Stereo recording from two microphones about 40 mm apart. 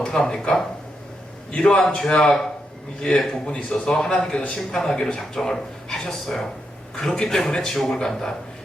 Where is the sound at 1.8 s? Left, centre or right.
Centre.